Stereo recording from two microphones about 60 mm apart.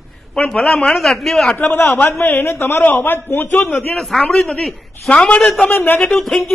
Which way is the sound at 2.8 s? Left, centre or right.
Left.